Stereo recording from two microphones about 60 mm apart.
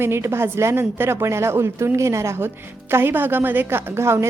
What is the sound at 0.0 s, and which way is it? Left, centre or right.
A woman's voice, right.